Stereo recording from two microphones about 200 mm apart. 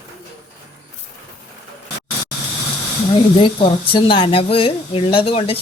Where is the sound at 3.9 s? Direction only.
25° left (ahead or behind).